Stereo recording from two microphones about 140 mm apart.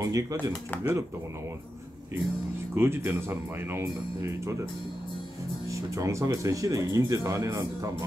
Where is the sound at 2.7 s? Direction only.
15° right (ahead or behind).